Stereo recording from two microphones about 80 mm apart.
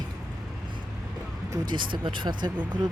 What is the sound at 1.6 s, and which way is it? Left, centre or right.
Speech, right.